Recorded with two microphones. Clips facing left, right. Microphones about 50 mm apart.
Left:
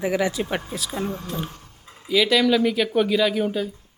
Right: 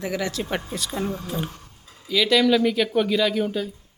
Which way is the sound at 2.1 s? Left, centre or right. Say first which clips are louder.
Even; centre.